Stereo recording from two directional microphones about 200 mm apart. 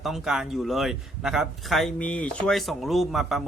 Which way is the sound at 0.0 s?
Centre (ahead or behind).